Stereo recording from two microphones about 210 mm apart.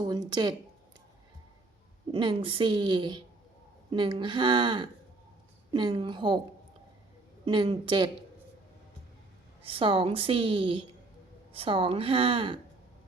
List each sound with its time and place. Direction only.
0.0 s speech: 20° right (ahead or behind)
2.1 s a woman's voice: 25° right (ahead or behind)
7.4 s a woman's voice: 25° right (ahead or behind)
9.6 s a woman's voice: 25° right (ahead or behind)